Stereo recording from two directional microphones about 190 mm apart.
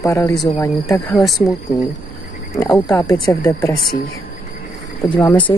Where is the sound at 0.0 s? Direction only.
15° left (ahead or behind).